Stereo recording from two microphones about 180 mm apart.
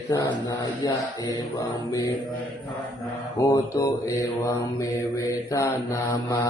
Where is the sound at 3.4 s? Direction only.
20° left (ahead or behind).